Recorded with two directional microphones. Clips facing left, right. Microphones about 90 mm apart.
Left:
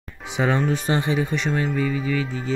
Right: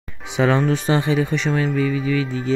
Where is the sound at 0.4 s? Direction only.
80° right.